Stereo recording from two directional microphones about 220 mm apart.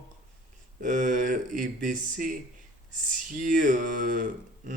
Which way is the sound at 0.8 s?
35° right (ahead or behind).